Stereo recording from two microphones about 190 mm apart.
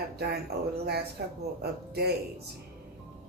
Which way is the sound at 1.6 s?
55° right (ahead or behind).